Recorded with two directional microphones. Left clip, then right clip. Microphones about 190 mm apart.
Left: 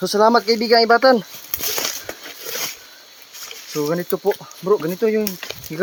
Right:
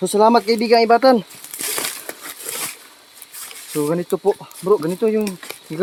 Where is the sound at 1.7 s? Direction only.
30° right (ahead or behind).